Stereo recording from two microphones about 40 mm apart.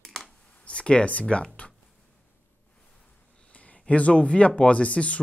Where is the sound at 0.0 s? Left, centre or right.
Centre.